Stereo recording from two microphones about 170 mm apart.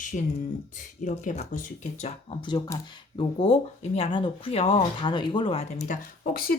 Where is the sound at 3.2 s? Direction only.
35° left (ahead or behind).